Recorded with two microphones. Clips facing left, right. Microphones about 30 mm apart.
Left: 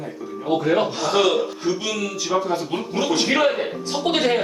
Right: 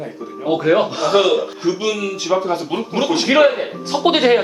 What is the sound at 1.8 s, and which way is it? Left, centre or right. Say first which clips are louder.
Speech: right 5 dB; right.